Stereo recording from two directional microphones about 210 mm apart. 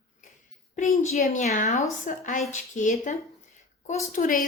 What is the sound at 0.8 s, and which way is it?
A woman's voice, 35° left (ahead or behind).